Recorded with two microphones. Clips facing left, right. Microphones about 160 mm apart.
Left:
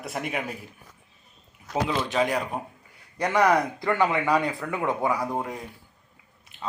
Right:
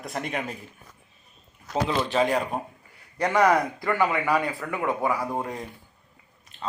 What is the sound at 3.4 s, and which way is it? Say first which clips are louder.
Speech: even; 5° right (ahead or behind).